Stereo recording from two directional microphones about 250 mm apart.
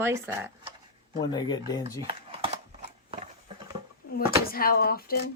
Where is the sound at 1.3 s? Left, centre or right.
Centre.